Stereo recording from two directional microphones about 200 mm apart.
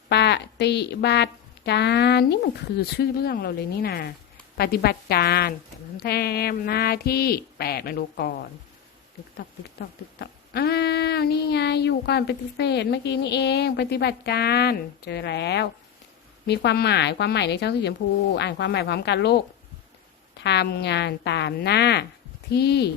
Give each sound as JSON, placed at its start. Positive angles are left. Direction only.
{"t": 0.1, "sound": "child singing", "side_deg": 60}
{"t": 4.5, "sound": "speech", "side_deg": 50}
{"t": 10.2, "sound": "child singing", "side_deg": 50}
{"t": 20.4, "sound": "child singing", "side_deg": 60}